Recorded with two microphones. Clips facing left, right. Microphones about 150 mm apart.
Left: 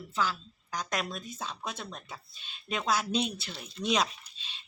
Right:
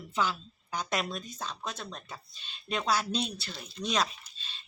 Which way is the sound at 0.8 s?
Centre (ahead or behind).